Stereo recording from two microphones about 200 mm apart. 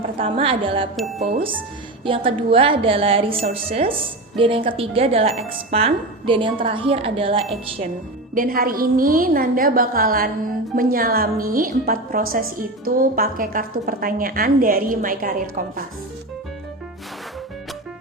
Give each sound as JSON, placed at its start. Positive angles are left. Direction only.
{"t": 0.2, "sound": "speech", "side_deg": -25}
{"t": 8.4, "sound": "a woman's voice", "side_deg": -45}